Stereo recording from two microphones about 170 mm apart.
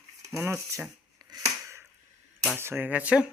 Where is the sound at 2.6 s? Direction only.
15° right (ahead or behind).